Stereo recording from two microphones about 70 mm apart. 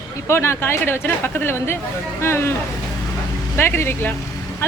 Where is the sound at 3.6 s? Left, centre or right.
Left.